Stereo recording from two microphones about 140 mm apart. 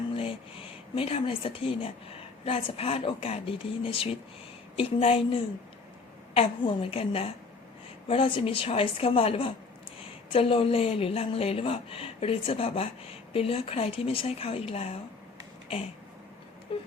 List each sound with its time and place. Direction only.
0.9 s a woman's voice: 40° left (ahead or behind)
16.7 s a woman's voice: 40° left (ahead or behind)